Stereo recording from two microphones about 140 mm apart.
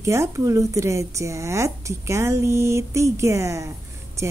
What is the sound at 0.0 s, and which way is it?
Speech, 20° right (ahead or behind).